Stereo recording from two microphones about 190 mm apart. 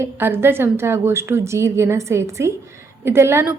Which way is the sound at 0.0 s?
10° right (ahead or behind).